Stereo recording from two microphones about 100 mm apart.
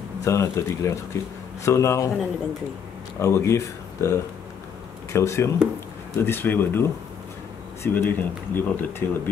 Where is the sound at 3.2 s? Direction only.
30° left (ahead or behind).